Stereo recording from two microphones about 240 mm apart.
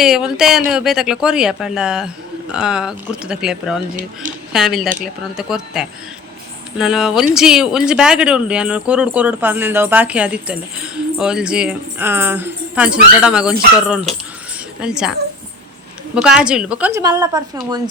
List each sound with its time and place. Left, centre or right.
0.0 s speech: centre
3.9 s speech: right
4.5 s speech: centre
16.1 s speech: centre